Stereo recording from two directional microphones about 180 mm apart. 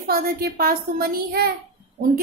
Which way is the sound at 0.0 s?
55° right (ahead or behind).